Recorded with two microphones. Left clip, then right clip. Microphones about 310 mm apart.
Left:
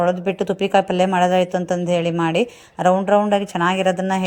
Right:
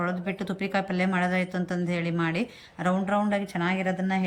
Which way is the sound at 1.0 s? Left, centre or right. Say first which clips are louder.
Left 11 dB; left.